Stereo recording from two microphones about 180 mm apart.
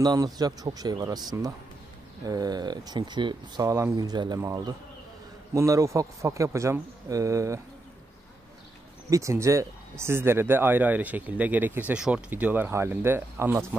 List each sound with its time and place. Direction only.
0.0 s speech: 20° right (ahead or behind)
9.1 s speech: 15° right (ahead or behind)